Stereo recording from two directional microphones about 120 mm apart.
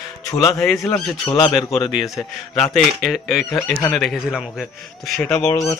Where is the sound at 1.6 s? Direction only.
Centre (ahead or behind).